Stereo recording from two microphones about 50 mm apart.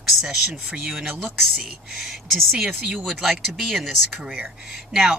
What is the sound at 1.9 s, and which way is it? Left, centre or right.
Speech, centre.